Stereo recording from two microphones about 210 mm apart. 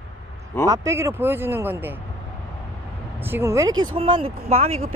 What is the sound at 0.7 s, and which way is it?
Speech, 15° right (ahead or behind).